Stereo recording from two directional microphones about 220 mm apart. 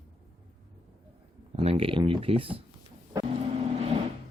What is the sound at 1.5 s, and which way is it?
Speech, 25° right (ahead or behind).